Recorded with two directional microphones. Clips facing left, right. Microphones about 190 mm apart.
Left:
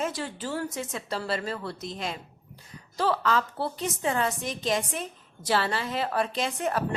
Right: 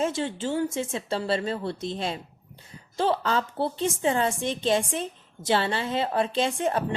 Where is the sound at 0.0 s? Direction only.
25° right (ahead or behind).